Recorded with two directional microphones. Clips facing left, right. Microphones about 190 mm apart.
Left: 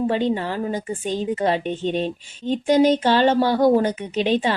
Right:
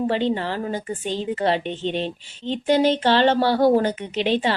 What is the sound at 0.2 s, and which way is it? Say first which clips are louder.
Speech: left 1 dB; 10° left (ahead or behind).